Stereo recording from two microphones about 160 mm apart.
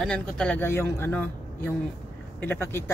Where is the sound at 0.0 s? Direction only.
5° left (ahead or behind).